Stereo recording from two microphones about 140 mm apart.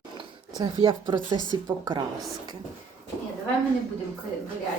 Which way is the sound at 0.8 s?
35° right (ahead or behind).